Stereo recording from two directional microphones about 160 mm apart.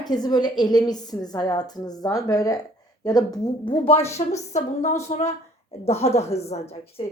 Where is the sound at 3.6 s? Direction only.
35° left (ahead or behind).